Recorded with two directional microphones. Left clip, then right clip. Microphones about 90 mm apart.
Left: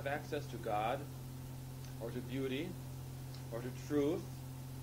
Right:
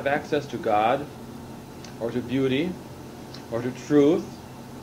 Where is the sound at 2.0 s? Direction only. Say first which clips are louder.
Right 16 dB; 30° left (ahead or behind).